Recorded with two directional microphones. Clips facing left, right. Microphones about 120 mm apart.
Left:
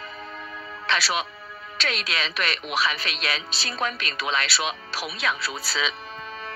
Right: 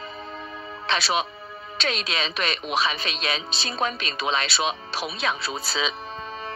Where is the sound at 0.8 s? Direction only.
25° right (ahead or behind).